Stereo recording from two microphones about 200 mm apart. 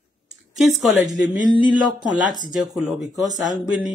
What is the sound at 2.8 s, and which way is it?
Speech, centre (ahead or behind).